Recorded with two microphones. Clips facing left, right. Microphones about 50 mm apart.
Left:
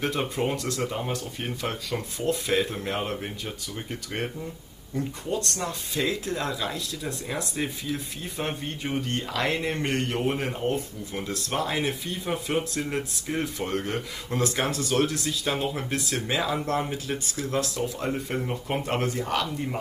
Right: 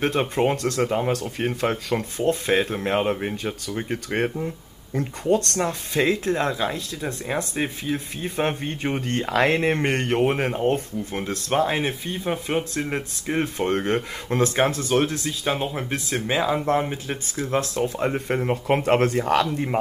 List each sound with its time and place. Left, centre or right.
0.0 s speech: right
18.3 s speech: right